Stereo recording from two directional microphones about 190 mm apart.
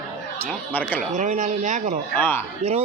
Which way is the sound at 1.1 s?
40° right (ahead or behind).